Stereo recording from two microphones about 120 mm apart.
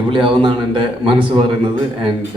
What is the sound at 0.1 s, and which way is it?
A man's voice, 45° right (ahead or behind).